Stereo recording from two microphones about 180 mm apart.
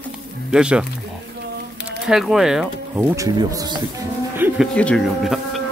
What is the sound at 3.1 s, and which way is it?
Speech, 20° right (ahead or behind).